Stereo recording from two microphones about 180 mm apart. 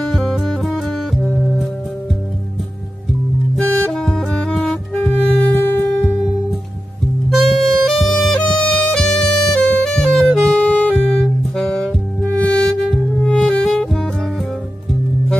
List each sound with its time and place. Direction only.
0.0 s music: centre (ahead or behind)
3.7 s music: 5° left (ahead or behind)
7.2 s music: centre (ahead or behind)